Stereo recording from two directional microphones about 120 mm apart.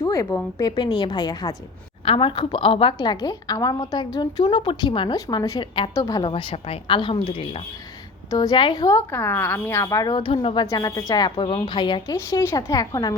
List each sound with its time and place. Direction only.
0.0 s a sound: 25° left (ahead or behind)
0.6 s a woman's voice: 35° left (ahead or behind)
2.0 s a woman's voice: 45° left (ahead or behind)
5.1 s a woman's voice: 30° left (ahead or behind)
6.3 s speech: 50° left (ahead or behind)
8.3 s speech: 35° left (ahead or behind)
10.2 s speech: 50° left (ahead or behind)
10.7 s a woman's voice: 30° left (ahead or behind)
12.1 s speech: 25° left (ahead or behind)